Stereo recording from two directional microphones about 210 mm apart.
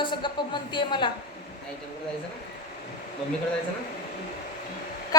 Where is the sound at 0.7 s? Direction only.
20° left (ahead or behind).